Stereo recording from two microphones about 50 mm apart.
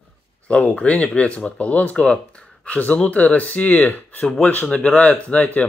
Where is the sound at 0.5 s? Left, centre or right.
Left.